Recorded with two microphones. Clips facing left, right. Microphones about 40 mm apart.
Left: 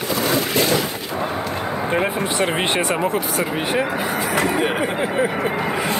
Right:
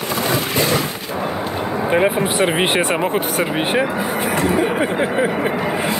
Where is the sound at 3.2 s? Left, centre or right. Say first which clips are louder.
Right 3 dB; right.